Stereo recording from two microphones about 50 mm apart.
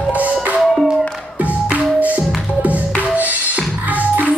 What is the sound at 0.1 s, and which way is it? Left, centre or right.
Music, right.